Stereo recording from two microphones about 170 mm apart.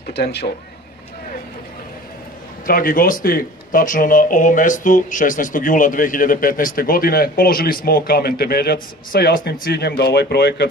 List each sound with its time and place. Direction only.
0.0 s speech: 70° left (ahead or behind)
2.6 s speech: 55° left (ahead or behind); by 10.7 s 75° left (ahead or behind)